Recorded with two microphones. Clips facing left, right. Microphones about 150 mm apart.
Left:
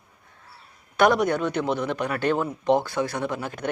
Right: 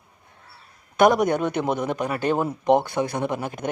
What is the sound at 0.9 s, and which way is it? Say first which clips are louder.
Speech: right 2 dB; 15° right (ahead or behind).